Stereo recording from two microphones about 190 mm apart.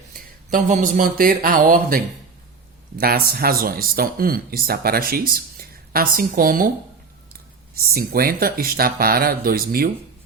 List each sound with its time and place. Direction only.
0.1 s speech: 45° right (ahead or behind)
3.0 s speech: 50° right (ahead or behind)
7.9 s speech: 50° right (ahead or behind)